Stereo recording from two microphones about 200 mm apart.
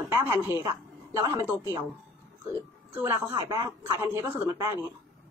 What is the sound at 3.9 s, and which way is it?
Speech, 10° right (ahead or behind).